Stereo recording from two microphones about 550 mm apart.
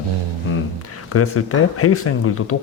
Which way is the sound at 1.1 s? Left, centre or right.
Left.